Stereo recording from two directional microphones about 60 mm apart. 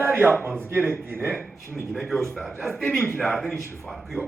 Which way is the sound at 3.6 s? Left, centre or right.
Right.